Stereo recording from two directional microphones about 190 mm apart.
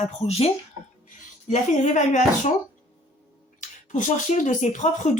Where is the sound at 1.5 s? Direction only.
40° left (ahead or behind).